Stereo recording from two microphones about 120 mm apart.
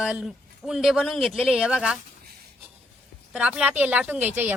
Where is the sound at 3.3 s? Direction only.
5° right (ahead or behind).